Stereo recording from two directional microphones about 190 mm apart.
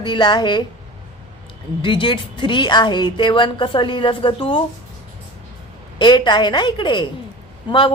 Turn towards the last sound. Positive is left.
turn(degrees=25)  # may be behind; listen again after turning